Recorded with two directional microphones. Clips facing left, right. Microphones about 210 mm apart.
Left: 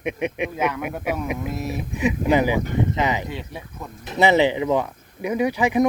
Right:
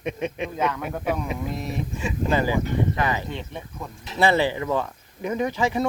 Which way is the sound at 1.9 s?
15° left (ahead or behind).